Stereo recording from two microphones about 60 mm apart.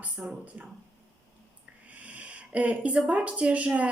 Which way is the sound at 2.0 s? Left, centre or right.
Right.